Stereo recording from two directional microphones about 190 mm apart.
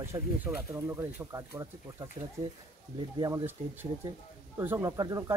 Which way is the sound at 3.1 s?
20° right (ahead or behind).